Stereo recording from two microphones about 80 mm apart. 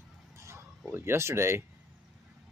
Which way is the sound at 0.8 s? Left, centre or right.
Right.